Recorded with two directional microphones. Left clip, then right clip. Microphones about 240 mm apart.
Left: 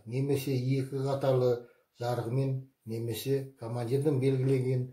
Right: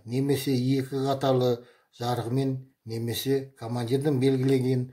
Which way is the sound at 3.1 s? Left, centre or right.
Right.